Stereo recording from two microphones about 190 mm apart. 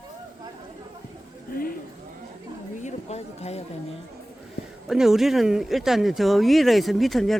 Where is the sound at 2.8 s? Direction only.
35° left (ahead or behind).